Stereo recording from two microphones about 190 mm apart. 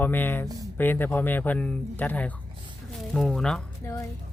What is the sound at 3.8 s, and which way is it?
Speech, 15° left (ahead or behind).